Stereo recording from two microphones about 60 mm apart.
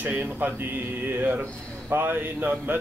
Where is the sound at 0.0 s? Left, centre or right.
Right.